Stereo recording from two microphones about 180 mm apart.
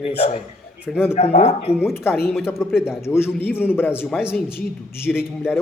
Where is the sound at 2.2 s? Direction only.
Centre (ahead or behind).